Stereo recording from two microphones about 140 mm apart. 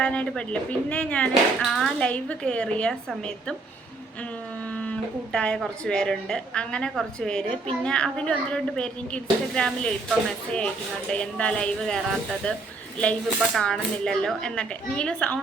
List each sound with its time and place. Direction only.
0.0 s a woman's voice: 10° left (ahead or behind)
13.6 s speech: 5° left (ahead or behind)